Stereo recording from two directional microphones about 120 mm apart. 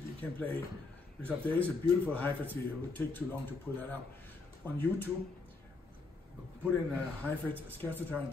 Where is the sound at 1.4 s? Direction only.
15° left (ahead or behind).